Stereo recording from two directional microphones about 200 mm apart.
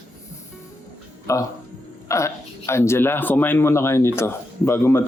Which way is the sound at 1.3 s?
15° left (ahead or behind).